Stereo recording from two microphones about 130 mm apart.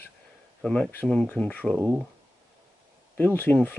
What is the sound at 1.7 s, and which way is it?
Speech, centre (ahead or behind).